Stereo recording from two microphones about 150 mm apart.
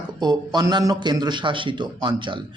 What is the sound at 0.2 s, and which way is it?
Speech, 30° right (ahead or behind).